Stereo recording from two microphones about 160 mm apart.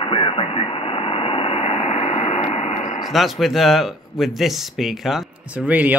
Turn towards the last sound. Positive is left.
turn(degrees=-10)  # may be behind; listen again after turning